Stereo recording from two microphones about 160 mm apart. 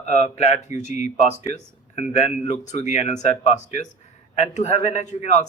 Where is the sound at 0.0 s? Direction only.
45° left (ahead or behind).